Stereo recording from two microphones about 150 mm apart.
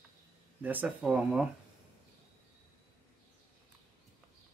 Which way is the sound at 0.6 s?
10° right (ahead or behind).